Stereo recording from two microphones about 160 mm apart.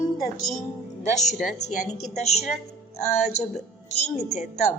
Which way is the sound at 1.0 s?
45° left (ahead or behind).